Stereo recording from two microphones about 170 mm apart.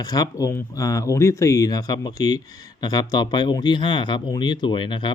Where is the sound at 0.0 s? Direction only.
20° left (ahead or behind).